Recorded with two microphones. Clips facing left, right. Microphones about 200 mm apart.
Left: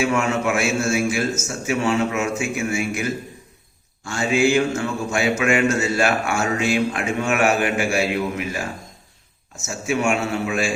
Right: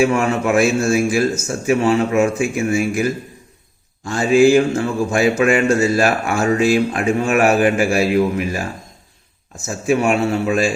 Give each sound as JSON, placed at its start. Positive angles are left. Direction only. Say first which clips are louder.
{"t": 0.0, "sound": "a man's voice", "louder": "right 4 dB", "side_deg": -35}
{"t": 9.8, "sound": "a man's voice", "louder": "right 5 dB", "side_deg": -35}